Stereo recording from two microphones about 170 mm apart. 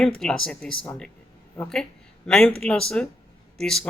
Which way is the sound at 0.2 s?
5° left (ahead or behind).